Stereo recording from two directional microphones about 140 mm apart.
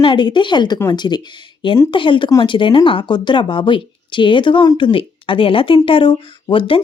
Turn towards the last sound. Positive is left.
turn(degrees=40)  # may be behind; listen again after turning